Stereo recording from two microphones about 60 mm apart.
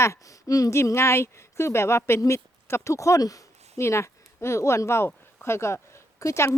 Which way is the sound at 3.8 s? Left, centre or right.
Left.